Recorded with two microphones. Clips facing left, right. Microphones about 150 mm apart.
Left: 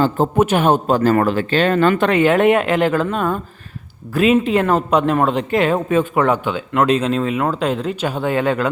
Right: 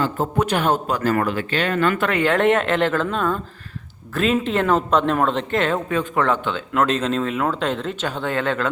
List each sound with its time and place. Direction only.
0.3 s speech: 15° left (ahead or behind)
0.9 s speech: 30° left (ahead or behind); by 8.7 s 10° left (ahead or behind)